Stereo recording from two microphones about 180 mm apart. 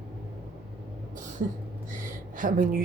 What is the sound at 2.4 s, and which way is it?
Speech, 50° right (ahead or behind).